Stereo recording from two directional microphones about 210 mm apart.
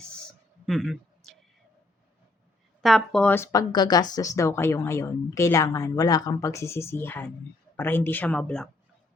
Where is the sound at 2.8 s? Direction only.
Centre (ahead or behind).